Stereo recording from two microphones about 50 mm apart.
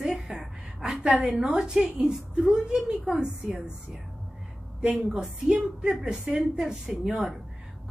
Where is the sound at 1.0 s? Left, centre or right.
Centre.